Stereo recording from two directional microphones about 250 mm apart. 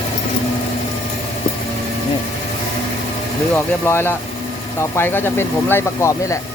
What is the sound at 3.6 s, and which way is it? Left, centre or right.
Speech, centre.